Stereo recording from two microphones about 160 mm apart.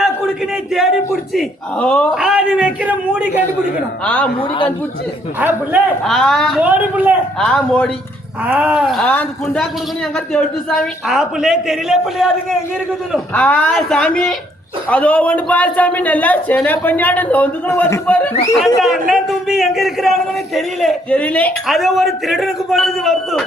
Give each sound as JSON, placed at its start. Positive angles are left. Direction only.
{"t": 0.5, "sound": "a man's voice", "side_deg": 0}
{"t": 2.1, "sound": "a man's voice", "side_deg": -5}
{"t": 4.0, "sound": "speech", "side_deg": 10}
{"t": 4.4, "sound": "a man's voice", "side_deg": 30}
{"t": 5.4, "sound": "a woman's voice", "side_deg": -10}
{"t": 6.1, "sound": "a man's voice", "side_deg": 5}
{"t": 6.6, "sound": "a woman's voice", "side_deg": -10}
{"t": 7.3, "sound": "a man's voice", "side_deg": 5}
{"t": 8.4, "sound": "a man's voice", "side_deg": -10}
{"t": 13.3, "sound": "speech", "side_deg": 10}
{"t": 18.6, "sound": "a man's voice", "side_deg": 0}